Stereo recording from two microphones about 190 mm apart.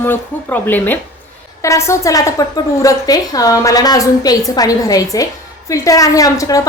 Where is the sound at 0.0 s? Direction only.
10° left (ahead or behind).